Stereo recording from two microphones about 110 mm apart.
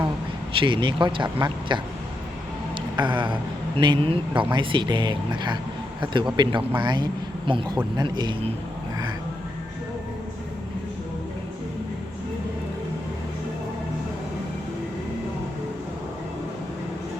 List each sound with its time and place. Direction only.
0.5 s speech: 50° right (ahead or behind)
2.9 s a sound: 45° right (ahead or behind)
3.8 s speech: 50° right (ahead or behind)